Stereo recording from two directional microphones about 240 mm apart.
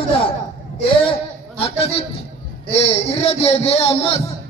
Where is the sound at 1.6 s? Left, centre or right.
Left.